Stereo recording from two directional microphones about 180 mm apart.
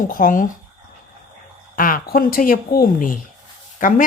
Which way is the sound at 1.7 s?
50° left (ahead or behind).